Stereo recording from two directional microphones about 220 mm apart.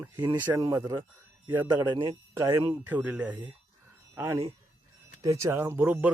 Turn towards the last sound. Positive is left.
turn(degrees=-10)  # may be behind; listen again after turning